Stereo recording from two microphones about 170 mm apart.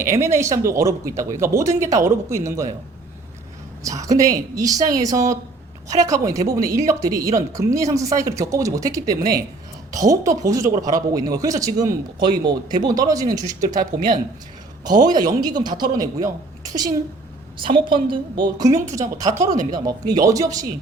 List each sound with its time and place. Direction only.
0.0 s speech: 15° right (ahead or behind)
4.0 s a woman's voice: 20° right (ahead or behind)
14.8 s a woman's voice: 25° right (ahead or behind)
17.6 s a woman's voice: 30° right (ahead or behind)